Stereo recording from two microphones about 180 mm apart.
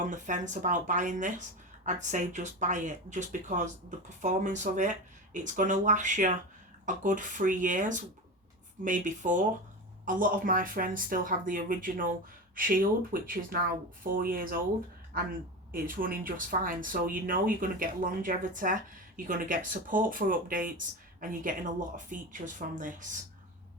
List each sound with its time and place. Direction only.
0.0 s a woman's voice: 45° right (ahead or behind)